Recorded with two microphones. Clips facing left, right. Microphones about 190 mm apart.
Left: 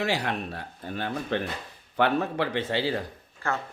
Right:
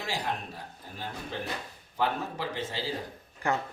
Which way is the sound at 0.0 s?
65° left (ahead or behind).